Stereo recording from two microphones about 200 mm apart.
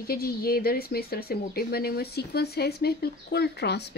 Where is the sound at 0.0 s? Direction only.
50° left (ahead or behind).